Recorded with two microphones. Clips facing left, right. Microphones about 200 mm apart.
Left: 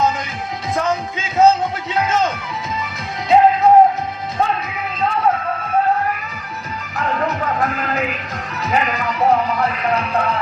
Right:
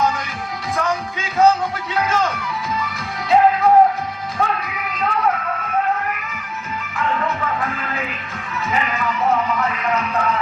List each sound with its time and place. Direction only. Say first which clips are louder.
0.8 s music: left 2 dB; 20° left (ahead or behind)
6.9 s music: left 2 dB; 40° left (ahead or behind)